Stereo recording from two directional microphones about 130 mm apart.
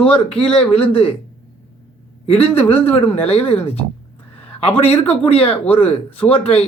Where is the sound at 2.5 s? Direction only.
45° left (ahead or behind).